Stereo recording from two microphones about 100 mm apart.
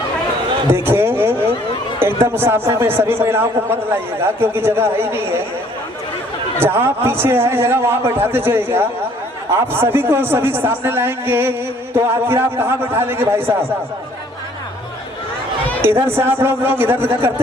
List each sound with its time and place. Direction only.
0.7 s a sound: 25° right (ahead or behind)
2.2 s a man's voice: 25° right (ahead or behind)
6.6 s a man's voice: 25° right (ahead or behind)
15.8 s a man's voice: 25° right (ahead or behind)